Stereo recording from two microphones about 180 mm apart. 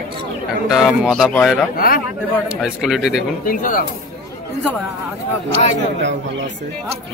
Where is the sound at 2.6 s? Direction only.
Centre (ahead or behind).